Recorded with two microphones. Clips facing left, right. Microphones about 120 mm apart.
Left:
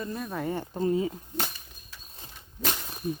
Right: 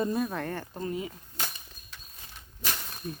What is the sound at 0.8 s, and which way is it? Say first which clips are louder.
Speech: left 9 dB; 30° left (ahead or behind).